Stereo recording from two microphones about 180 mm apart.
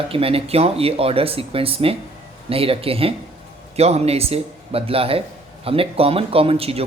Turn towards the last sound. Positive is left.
turn(degrees=-35)  # may be behind; listen again after turning